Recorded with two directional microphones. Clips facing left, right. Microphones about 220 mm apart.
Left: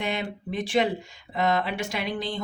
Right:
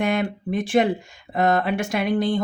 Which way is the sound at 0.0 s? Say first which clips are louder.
Right 7 dB; 50° right (ahead or behind).